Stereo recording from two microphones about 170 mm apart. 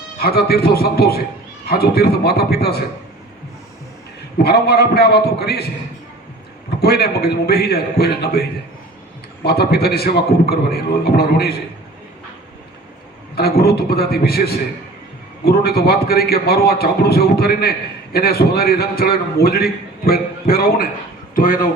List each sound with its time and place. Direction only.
0.2 s a man's voice: 65° left (ahead or behind)
4.4 s a man's voice: 70° left (ahead or behind)
6.8 s a man's voice: 70° left (ahead or behind)
13.3 s a man's voice: 65° left (ahead or behind)